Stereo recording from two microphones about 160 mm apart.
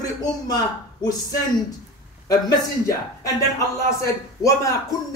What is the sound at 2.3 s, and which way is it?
A man's voice, 20° left (ahead or behind).